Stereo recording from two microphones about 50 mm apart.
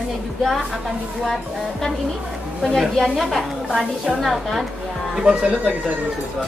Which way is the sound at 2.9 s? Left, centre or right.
Centre.